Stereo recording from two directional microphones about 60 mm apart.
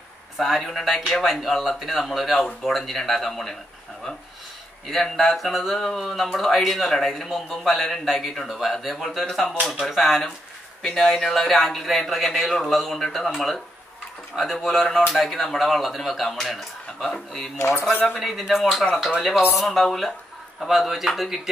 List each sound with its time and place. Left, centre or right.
0.4 s speech: centre
4.8 s speech: centre
17.6 s speech: left
18.2 s speech: centre